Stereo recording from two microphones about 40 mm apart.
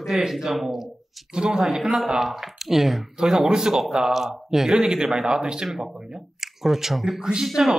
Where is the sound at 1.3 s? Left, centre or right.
Centre.